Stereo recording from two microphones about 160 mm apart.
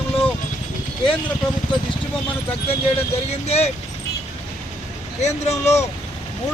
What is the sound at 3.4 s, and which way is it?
Speech, 40° left (ahead or behind).